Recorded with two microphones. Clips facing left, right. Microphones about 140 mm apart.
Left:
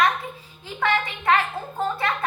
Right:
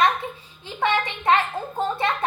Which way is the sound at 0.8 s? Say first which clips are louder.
Right 1 dB; 25° right (ahead or behind).